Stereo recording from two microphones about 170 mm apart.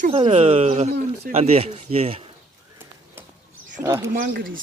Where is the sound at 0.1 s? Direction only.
35° right (ahead or behind).